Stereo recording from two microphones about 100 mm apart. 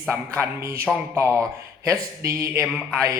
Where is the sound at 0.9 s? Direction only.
Centre (ahead or behind).